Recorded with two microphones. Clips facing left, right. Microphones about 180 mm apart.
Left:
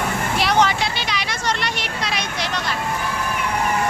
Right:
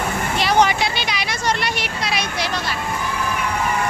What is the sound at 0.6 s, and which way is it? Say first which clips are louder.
Vehicle: right 2 dB; 15° right (ahead or behind).